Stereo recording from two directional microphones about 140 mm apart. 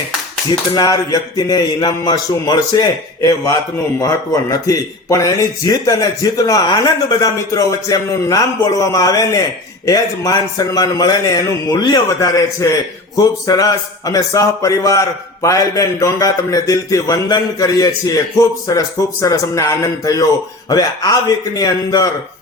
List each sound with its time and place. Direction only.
0.7 s a man's voice: 25° left (ahead or behind)